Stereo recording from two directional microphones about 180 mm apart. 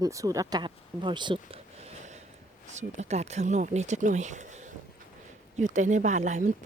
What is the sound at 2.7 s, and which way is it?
A woman's voice, 40° right (ahead or behind).